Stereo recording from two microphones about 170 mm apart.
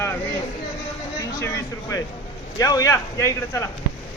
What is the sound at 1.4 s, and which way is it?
Speech, 20° left (ahead or behind).